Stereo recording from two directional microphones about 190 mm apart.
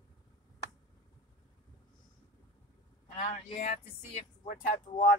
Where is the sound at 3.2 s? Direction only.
35° left (ahead or behind).